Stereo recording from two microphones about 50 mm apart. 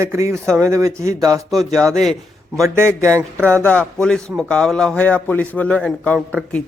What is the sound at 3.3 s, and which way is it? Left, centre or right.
Speech, right.